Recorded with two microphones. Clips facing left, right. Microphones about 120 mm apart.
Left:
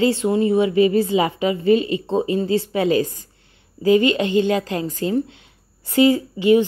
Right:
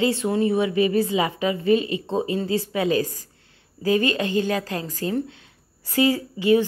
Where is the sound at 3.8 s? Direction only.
20° left (ahead or behind).